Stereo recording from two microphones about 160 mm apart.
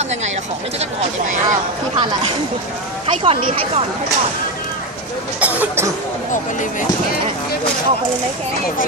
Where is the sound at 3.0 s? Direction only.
35° right (ahead or behind).